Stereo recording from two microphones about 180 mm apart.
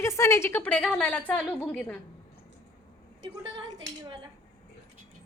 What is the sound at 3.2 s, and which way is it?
Speech, 25° right (ahead or behind).